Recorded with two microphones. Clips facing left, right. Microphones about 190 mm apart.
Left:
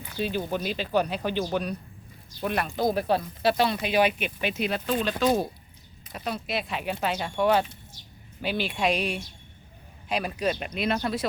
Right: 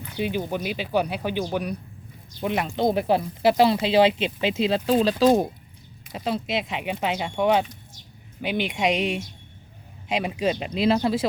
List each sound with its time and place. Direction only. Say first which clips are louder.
0.2 s speech: right 2 dB; 15° right (ahead or behind)